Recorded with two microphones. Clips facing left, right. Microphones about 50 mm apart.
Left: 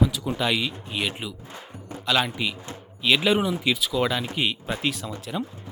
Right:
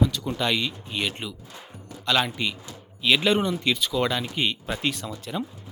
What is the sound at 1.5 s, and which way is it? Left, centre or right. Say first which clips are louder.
Music: left 4 dB; left.